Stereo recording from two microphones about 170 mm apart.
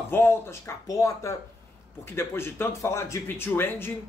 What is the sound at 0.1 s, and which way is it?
Speech, 15° left (ahead or behind).